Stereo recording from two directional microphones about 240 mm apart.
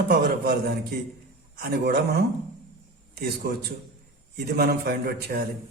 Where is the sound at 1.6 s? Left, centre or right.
Right.